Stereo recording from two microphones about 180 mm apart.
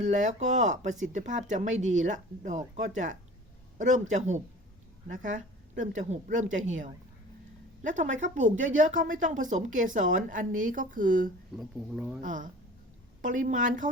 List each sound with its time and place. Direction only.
0.0 s speech: 45° right (ahead or behind)
11.5 s speech: 5° right (ahead or behind)
12.2 s speech: 45° right (ahead or behind)